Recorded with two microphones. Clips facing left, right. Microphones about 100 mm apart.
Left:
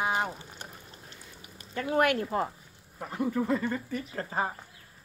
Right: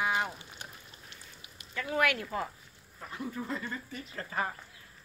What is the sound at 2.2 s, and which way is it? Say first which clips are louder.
Speech: left 5 dB; 30° left (ahead or behind).